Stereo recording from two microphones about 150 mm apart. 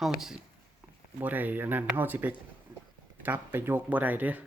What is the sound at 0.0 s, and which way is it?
Speech, 5° right (ahead or behind).